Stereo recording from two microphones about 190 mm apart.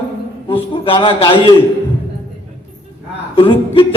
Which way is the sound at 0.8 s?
25° left (ahead or behind).